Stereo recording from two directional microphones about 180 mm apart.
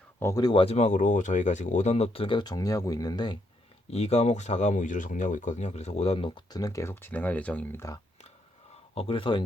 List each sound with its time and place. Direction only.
0.2 s speech: 15° left (ahead or behind)
3.8 s speech: 35° left (ahead or behind); by 7.9 s 15° left (ahead or behind)
9.0 s speech: 30° left (ahead or behind)